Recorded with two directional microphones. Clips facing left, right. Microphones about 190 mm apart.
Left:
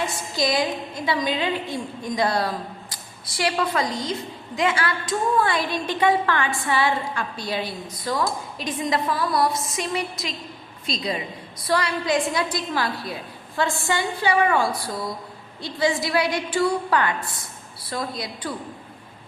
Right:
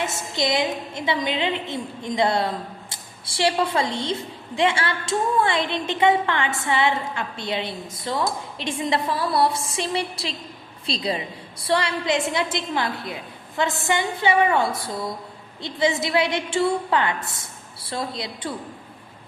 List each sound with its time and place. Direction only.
0.0 s a woman's voice: 25° right (ahead or behind)